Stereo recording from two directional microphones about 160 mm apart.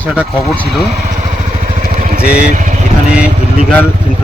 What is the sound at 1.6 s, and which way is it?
Vehicle, 60° right (ahead or behind).